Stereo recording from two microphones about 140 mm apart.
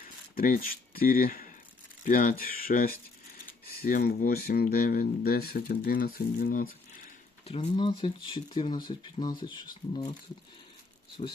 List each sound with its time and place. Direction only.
0.0 s speech: 80° left
2.0 s speech: 75° left (ahead or behind)
7.4 s speech: 45° left (ahead or behind)